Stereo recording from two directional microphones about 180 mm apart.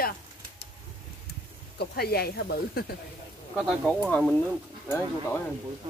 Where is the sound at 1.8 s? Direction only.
60° left (ahead or behind).